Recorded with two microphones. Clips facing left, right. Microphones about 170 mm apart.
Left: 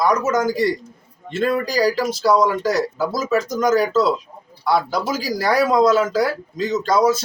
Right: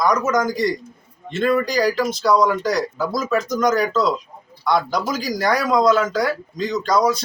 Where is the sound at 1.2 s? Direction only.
5° left (ahead or behind).